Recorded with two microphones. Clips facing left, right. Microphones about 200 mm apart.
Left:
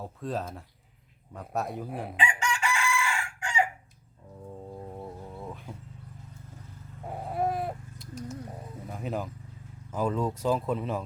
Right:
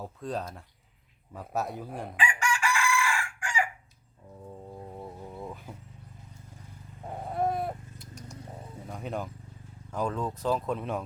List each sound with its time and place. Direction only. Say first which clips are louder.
0.0 s speech: left 1 dB; centre (ahead or behind)
2.1 s chicken: right 1 dB; 20° left (ahead or behind)
4.4 s music: left 2 dB; 5° left (ahead or behind)
7.1 s livestock: even; 5° left (ahead or behind)
8.9 s speech: left 2 dB; centre (ahead or behind)